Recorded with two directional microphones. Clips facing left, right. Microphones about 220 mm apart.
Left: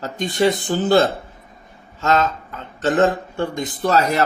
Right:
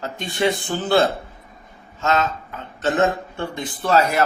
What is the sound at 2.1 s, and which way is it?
Speech, 40° left (ahead or behind).